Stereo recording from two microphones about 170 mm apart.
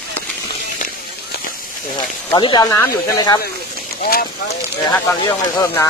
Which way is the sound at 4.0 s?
60° left (ahead or behind).